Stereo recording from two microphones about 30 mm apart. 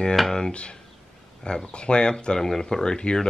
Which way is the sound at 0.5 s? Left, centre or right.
Left.